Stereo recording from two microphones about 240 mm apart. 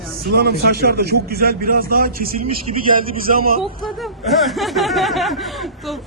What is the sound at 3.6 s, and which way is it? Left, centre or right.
Speech, centre.